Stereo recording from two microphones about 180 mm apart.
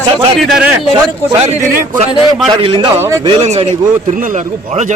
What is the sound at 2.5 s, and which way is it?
A man's voice, 30° right (ahead or behind).